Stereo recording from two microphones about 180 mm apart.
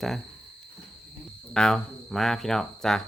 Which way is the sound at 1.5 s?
5° left (ahead or behind).